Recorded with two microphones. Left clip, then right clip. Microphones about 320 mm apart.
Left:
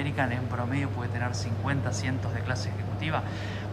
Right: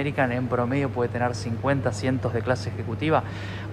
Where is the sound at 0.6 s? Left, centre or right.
Centre.